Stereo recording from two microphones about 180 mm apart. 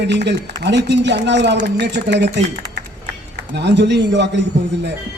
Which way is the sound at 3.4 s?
70° right (ahead or behind).